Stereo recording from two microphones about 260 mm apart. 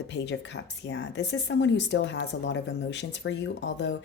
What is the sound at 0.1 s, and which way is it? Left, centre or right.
Speech, left.